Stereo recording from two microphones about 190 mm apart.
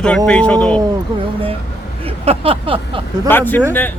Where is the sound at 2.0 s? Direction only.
30° right (ahead or behind).